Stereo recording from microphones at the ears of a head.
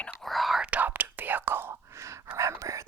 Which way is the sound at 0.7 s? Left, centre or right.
Right.